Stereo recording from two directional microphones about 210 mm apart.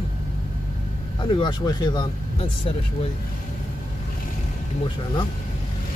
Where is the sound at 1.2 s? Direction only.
20° left (ahead or behind).